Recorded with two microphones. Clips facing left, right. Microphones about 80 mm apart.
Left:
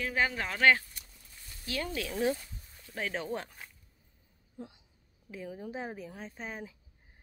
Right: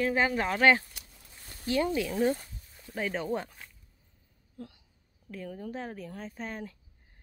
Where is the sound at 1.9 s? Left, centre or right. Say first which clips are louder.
Right 4 dB; centre.